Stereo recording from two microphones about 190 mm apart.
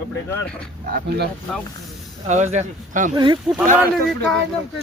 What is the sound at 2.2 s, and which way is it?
Speech, 40° right (ahead or behind).